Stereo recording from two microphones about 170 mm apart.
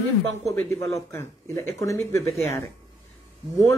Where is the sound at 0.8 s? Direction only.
15° left (ahead or behind).